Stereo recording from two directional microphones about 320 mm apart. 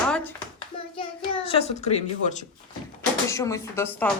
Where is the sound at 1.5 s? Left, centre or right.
Centre.